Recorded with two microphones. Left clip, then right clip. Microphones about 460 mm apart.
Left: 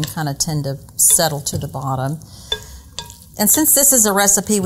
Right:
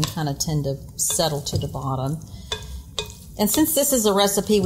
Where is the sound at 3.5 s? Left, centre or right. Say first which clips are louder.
Left 4 dB; left.